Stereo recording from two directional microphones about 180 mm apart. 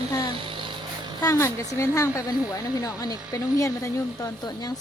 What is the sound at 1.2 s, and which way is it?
A woman's voice, 15° left (ahead or behind).